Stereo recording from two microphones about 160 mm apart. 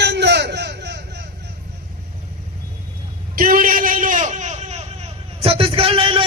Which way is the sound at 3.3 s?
60° right (ahead or behind).